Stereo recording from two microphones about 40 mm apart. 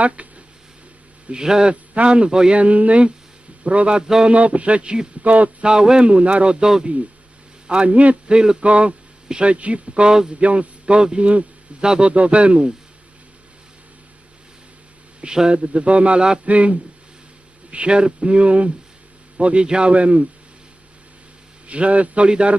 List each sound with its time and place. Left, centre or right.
0.0 s a sound: right
1.3 s a man's voice: centre
2.6 s speech: right
4.0 s a sound: centre
4.3 s speech: right
5.2 s speech: right
5.6 s a man's voice: centre
6.1 s speech: right
6.6 s a sound: centre
7.7 s a man's voice: right
10.4 s a man's voice: right
15.2 s a man's voice: right
21.7 s speech: right
22.3 s a man's voice: right